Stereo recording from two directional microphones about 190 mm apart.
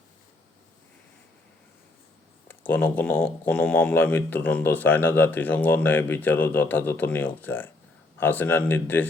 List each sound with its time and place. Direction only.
2.5 s speech: 10° left (ahead or behind)